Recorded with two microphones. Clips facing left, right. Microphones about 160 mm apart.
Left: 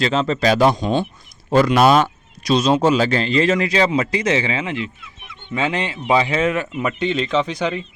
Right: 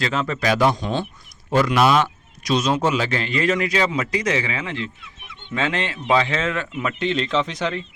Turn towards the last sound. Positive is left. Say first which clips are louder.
# left 3 dB
turn(degrees=0)  # may be behind; listen again after turning